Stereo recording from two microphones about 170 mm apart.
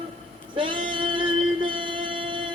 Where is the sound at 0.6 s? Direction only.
30° right (ahead or behind).